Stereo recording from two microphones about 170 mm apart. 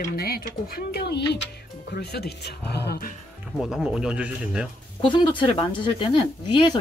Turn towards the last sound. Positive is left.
turn(degrees=30)  # may be behind; listen again after turning